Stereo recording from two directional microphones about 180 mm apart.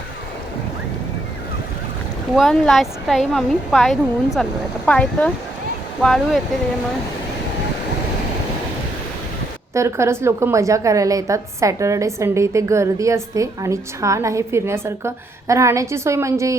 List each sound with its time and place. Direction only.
2.3 s speech: centre (ahead or behind)
9.7 s a woman's voice: 15° right (ahead or behind)